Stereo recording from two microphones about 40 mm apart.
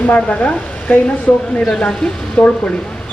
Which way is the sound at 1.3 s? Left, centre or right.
Left.